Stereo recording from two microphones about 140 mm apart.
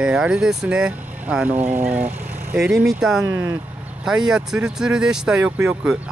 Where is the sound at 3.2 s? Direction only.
20° right (ahead or behind).